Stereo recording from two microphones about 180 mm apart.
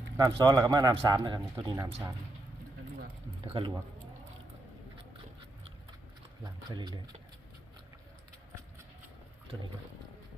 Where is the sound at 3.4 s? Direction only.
30° right (ahead or behind).